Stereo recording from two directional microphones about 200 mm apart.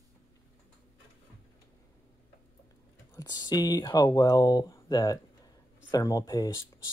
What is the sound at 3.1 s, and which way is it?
Speech, 20° left (ahead or behind).